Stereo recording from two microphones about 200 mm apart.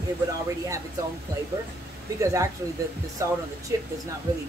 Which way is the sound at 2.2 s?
15° right (ahead or behind).